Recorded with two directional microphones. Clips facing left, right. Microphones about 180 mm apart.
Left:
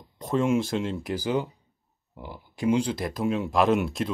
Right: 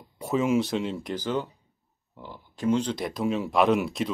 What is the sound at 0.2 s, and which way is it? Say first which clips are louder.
Speech: even; 5° right (ahead or behind).